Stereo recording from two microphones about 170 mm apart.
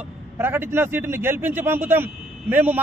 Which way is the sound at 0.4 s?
10° right (ahead or behind).